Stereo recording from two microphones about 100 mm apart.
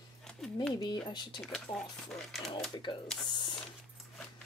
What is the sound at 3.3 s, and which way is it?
Printer, 50° left (ahead or behind).